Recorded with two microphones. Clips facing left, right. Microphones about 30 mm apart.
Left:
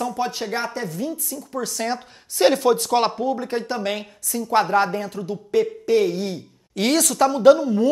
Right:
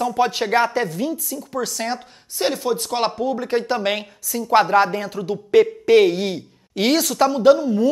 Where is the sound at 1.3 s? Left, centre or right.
Right.